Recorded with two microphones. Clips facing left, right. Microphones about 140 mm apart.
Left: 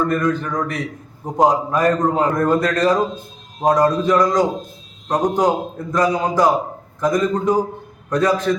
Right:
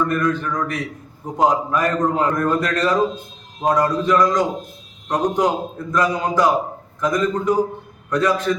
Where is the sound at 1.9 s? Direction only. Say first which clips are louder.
Left 2 dB; 15° left (ahead or behind).